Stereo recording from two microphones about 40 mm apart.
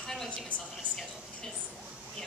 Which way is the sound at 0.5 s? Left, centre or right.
Left.